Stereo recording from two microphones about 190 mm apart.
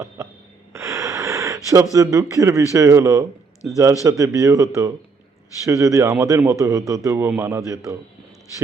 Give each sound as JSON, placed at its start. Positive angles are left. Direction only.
{"t": 0.7, "sound": "gasp", "side_deg": -15}
{"t": 2.7, "sound": "a man's voice", "side_deg": -15}